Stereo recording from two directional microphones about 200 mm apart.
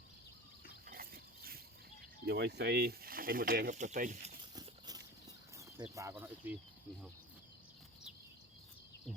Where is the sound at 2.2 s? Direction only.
55° right (ahead or behind).